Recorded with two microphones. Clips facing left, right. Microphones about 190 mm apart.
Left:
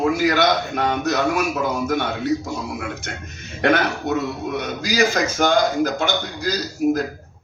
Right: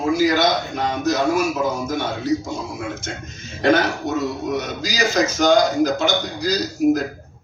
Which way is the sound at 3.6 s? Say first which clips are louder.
Right 1 dB; 60° left (ahead or behind).